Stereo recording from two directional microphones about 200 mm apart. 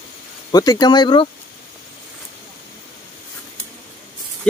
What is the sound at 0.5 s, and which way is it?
Speech, 20° left (ahead or behind).